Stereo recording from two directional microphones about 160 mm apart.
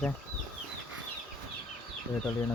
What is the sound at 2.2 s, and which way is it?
Speech, 10° left (ahead or behind).